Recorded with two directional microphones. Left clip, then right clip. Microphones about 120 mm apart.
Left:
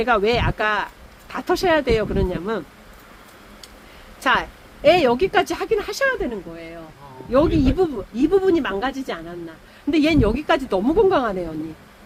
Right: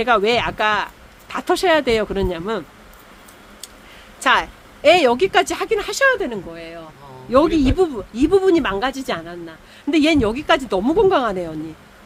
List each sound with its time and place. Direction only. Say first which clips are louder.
0.0 s speech: right 2 dB; 5° right (ahead or behind)
4.2 s speech: right 3 dB; 10° right (ahead or behind)
9.9 s speech: right 2 dB; centre (ahead or behind)